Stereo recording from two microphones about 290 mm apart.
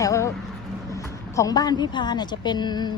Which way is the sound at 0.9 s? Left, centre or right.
Centre.